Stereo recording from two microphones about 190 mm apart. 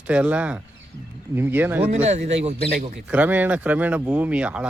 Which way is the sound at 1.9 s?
35° right (ahead or behind).